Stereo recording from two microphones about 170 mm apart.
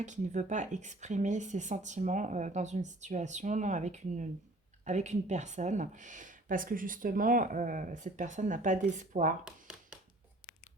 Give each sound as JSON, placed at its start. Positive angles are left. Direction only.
{"t": 0.0, "sound": "speech", "side_deg": -45}